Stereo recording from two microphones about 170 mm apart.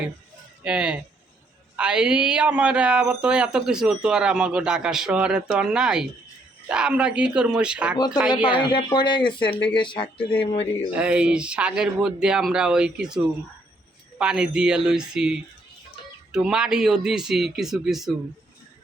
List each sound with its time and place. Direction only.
0.6 s speech: 5° right (ahead or behind)
7.9 s speech: 25° left (ahead or behind)
10.9 s speech: 5° right (ahead or behind)